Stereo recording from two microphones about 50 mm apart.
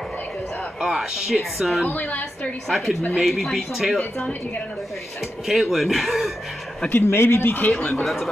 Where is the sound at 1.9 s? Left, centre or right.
Left.